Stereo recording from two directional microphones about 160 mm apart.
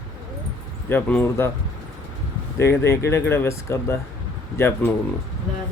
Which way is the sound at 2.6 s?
15° left (ahead or behind).